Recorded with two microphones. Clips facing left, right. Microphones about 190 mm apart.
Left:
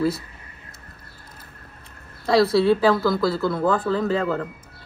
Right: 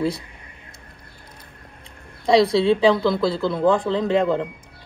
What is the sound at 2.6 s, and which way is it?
Speech, 25° right (ahead or behind).